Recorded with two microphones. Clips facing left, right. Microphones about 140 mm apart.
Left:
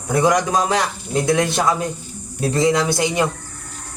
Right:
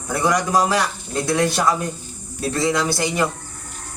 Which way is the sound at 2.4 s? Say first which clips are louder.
Left 3 dB; 20° left (ahead or behind).